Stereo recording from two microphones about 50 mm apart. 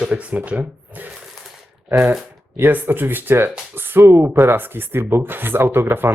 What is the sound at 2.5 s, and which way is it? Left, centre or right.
Speech, right.